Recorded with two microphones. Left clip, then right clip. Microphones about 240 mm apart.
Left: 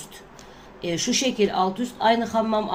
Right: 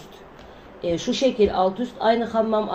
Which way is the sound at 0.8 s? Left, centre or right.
Left.